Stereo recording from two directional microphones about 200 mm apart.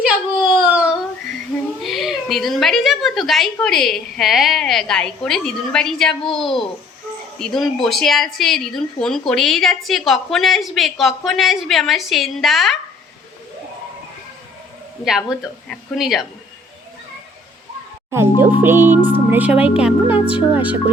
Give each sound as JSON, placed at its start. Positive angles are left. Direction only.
{"t": 0.6, "sound": "a sound", "side_deg": -5}
{"t": 1.8, "sound": "a woman's voice", "side_deg": 0}
{"t": 15.0, "sound": "a woman's voice", "side_deg": 0}
{"t": 18.1, "sound": "speech", "side_deg": -10}
{"t": 18.6, "sound": "music", "side_deg": -10}
{"t": 19.3, "sound": "speech", "side_deg": -5}